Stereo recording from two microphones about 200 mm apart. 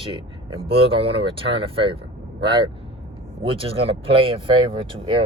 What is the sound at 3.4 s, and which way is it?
Speech, 30° right (ahead or behind).